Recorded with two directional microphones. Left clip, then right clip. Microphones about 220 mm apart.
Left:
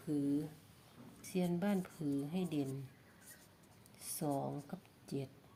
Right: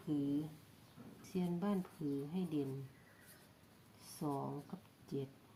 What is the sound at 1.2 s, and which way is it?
A woman's voice, 40° left (ahead or behind).